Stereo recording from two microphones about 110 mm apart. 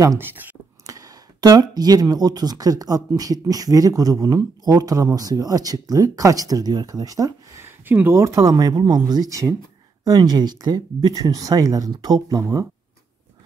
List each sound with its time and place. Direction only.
0.2 s speech: 15° right (ahead or behind)
0.8 s speech: 35° right (ahead or behind)
7.8 s speech: 20° right (ahead or behind)